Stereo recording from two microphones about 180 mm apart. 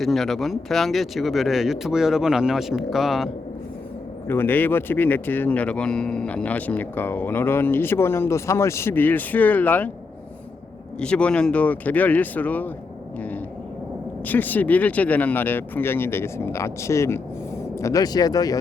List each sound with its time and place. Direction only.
0.0 s speech: centre (ahead or behind)
4.3 s speech: 10° left (ahead or behind)
11.0 s speech: 5° left (ahead or behind)
14.3 s speech: 10° left (ahead or behind)